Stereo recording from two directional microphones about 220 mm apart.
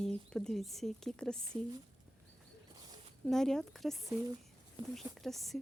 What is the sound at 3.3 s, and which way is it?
Speech, centre (ahead or behind).